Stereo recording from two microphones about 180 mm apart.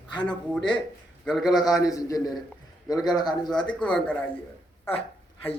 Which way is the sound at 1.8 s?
20° left (ahead or behind).